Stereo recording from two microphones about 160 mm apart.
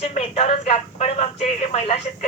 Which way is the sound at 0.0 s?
40° left (ahead or behind).